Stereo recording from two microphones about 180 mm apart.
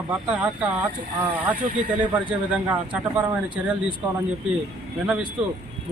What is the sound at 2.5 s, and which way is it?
Speech, 5° right (ahead or behind).